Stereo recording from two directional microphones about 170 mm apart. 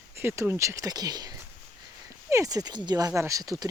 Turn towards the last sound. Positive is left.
turn(degrees=-20)  # may be behind; listen again after turning